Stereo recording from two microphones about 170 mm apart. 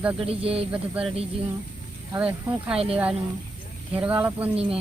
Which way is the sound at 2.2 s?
5° right (ahead or behind).